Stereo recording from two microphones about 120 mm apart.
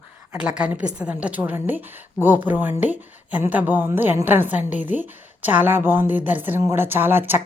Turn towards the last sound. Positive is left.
turn(degrees=-15)  # may be behind; listen again after turning